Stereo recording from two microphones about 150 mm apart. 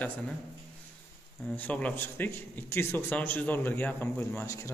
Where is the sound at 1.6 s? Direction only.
10° left (ahead or behind).